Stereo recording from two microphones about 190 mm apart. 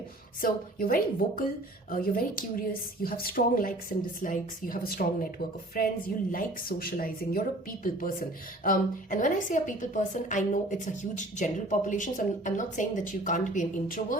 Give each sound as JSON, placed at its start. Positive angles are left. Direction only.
{"t": 0.4, "sound": "speech", "side_deg": 50}
{"t": 8.6, "sound": "a woman's voice", "side_deg": 45}